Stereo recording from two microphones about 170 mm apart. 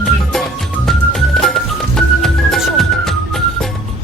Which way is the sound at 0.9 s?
Centre (ahead or behind).